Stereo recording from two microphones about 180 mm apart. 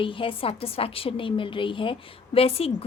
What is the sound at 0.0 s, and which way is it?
A woman's voice, 30° left (ahead or behind).